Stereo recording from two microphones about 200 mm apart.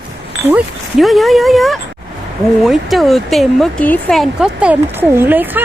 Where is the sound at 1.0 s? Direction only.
Centre (ahead or behind).